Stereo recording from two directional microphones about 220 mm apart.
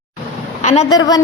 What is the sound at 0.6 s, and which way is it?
Speech, 30° left (ahead or behind).